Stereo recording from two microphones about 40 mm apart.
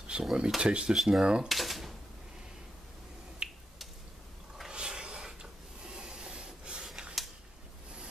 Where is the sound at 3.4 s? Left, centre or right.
Right.